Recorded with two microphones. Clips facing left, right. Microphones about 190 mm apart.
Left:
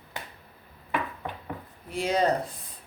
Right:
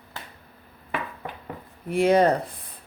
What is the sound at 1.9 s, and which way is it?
Speech, 55° right (ahead or behind).